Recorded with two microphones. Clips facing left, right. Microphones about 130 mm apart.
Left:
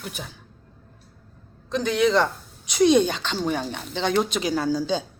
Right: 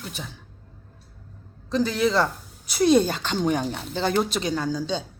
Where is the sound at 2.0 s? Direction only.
5° right (ahead or behind).